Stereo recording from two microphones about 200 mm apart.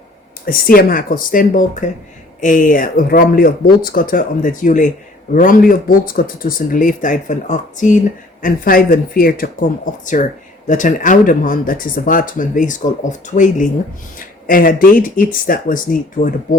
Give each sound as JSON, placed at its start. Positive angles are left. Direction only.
{"t": 0.4, "sound": "speech", "side_deg": 45}